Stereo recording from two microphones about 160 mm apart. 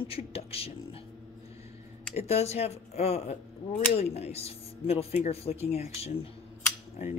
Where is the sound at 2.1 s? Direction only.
40° left (ahead or behind).